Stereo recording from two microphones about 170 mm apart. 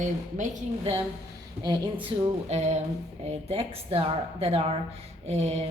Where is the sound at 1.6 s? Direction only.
30° right (ahead or behind).